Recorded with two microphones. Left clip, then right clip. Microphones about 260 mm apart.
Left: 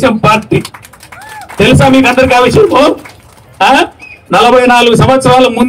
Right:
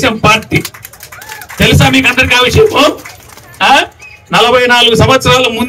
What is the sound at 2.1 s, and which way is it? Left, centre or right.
Speech, left.